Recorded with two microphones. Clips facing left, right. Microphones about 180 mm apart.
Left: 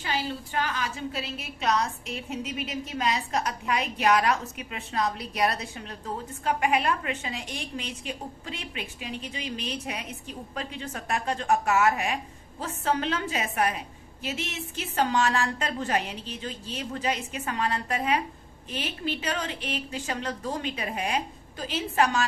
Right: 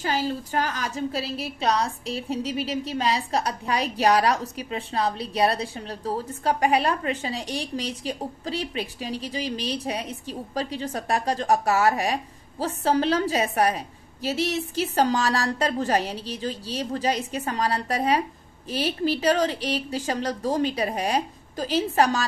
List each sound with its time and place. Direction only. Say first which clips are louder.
0.0 s a woman's voice: right 5 dB; 40° right (ahead or behind)